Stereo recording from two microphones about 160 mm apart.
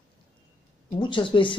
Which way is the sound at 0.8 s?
30° left (ahead or behind).